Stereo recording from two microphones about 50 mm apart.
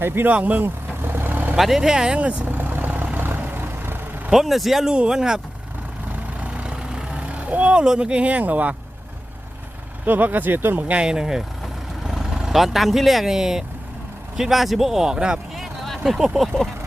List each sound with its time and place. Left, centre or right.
0.0 s speech: right
0.3 s speech: right
0.6 s vehicle: right
1.5 s speech: centre
2.1 s speech: right
2.5 s vehicle: right
4.3 s speech: centre
6.1 s vehicle: right
6.7 s vehicle: centre; by 8.7 s right
10.1 s speech: right
11.0 s speech: centre
15.5 s vehicle: centre
16.1 s speech: centre